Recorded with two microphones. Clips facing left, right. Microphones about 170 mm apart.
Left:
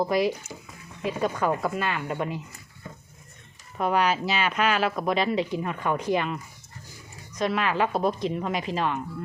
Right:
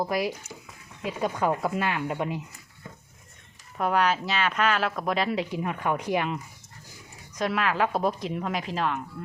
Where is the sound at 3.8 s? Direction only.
Centre (ahead or behind).